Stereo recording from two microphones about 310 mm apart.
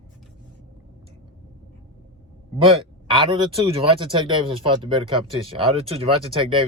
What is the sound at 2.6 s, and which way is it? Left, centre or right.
Speech, centre.